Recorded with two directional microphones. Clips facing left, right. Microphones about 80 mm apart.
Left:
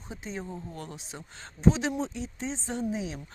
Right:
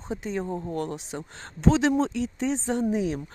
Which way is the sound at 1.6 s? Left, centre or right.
Right.